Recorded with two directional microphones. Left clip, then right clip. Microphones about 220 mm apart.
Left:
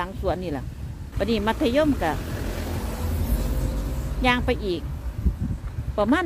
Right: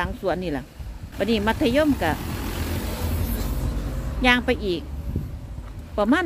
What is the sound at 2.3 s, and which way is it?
Vehicle, 45° right (ahead or behind).